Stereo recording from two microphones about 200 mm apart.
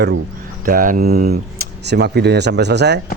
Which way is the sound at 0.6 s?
45° right (ahead or behind).